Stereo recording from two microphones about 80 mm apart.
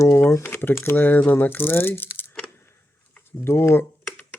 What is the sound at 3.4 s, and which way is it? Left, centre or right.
Speech, left.